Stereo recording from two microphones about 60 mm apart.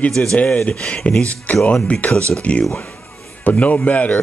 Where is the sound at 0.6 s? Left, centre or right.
Left.